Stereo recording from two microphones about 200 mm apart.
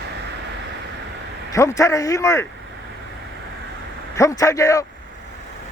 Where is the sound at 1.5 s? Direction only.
15° left (ahead or behind).